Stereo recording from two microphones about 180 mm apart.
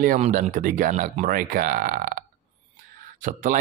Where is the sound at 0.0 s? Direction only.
45° right (ahead or behind).